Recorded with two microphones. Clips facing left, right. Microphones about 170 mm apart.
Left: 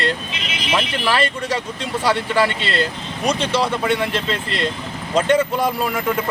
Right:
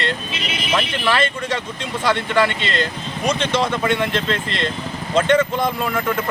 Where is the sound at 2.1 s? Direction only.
10° left (ahead or behind).